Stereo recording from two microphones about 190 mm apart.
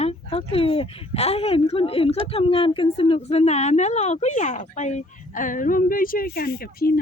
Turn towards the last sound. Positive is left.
turn(degrees=55)  # may be behind; listen again after turning